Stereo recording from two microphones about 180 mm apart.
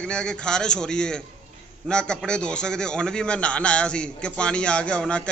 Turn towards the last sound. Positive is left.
turn(degrees=5)  # may be behind; listen again after turning